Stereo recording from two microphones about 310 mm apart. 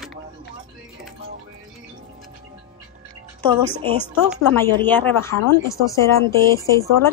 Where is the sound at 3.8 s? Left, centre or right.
Centre.